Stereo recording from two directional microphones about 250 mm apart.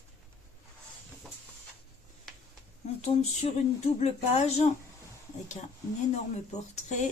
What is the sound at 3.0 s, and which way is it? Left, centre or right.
Speech, left.